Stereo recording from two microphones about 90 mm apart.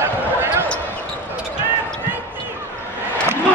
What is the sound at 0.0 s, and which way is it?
Basketball bounce, 25° right (ahead or behind).